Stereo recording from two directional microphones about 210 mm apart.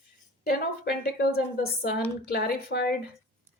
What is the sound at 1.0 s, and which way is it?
Speech, 50° left (ahead or behind).